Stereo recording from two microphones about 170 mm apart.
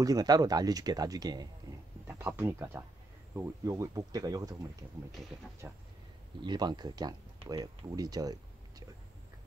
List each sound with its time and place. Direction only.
0.0 s speech: 20° right (ahead or behind)
5.6 s speech: 15° right (ahead or behind)
6.4 s speech: 25° right (ahead or behind)